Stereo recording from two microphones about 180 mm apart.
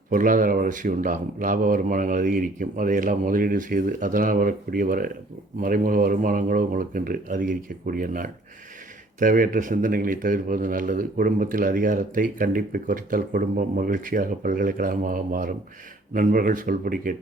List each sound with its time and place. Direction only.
0.1 s a man's voice: 50° right (ahead or behind)